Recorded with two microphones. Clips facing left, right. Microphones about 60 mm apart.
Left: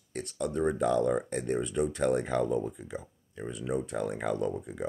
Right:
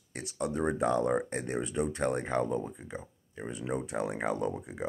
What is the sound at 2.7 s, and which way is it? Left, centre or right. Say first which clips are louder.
Speech: left 2 dB; right.